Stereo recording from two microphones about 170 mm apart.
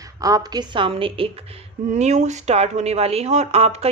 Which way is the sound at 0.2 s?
20° right (ahead or behind).